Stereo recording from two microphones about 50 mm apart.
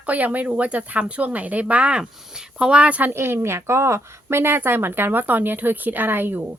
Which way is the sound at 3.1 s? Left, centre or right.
Right.